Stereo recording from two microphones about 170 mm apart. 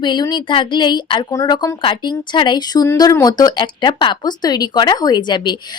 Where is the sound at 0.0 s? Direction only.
25° left (ahead or behind).